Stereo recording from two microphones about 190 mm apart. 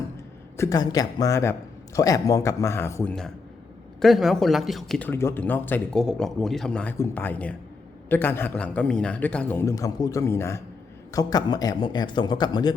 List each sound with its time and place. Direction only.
0.5 s a man's voice: 15° left (ahead or behind)